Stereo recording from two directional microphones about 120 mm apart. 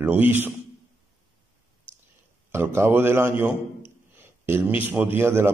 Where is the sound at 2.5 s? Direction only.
20° right (ahead or behind).